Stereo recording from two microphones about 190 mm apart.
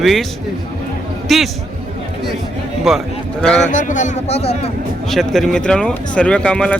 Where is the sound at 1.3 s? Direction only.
Centre (ahead or behind).